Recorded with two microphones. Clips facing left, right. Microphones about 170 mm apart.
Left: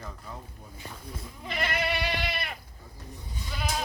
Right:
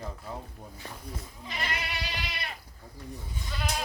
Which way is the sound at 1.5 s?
55° left (ahead or behind).